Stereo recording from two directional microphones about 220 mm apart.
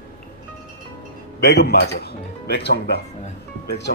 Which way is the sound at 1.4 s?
50° left (ahead or behind).